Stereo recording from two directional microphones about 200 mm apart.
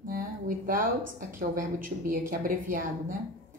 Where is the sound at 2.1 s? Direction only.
45° right (ahead or behind).